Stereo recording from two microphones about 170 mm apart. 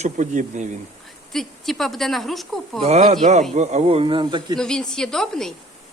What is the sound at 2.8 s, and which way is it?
Speech, 40° right (ahead or behind).